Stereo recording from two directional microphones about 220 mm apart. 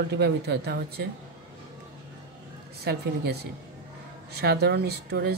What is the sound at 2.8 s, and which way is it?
Speech, 45° right (ahead or behind).